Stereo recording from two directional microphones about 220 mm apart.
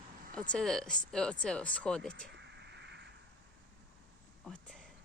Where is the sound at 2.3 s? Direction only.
55° right (ahead or behind).